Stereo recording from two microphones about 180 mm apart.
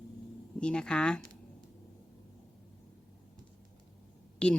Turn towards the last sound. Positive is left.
turn(degrees=5)  # may be behind; listen again after turning